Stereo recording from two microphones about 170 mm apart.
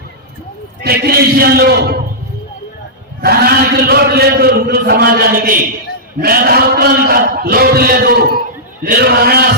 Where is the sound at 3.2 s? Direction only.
65° right (ahead or behind).